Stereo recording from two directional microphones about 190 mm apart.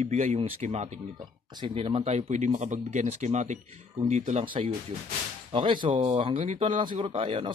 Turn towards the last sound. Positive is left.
turn(degrees=-25)  # may be behind; listen again after turning